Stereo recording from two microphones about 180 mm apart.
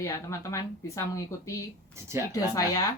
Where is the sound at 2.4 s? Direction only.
20° left (ahead or behind).